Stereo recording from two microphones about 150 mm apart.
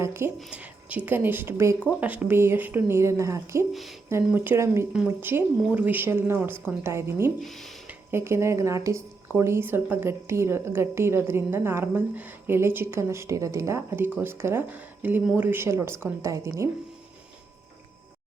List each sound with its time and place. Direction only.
0.0 s a sound: 15° right (ahead or behind)
0.3 s speech: 5° right (ahead or behind)
3.7 s speech: centre (ahead or behind)
4.3 s speech: 15° right (ahead or behind)
7.4 s speech: centre (ahead or behind)
7.9 s speech: 15° right (ahead or behind)